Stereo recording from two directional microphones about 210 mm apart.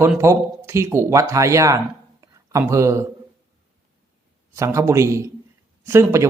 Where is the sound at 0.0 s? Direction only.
10° right (ahead or behind).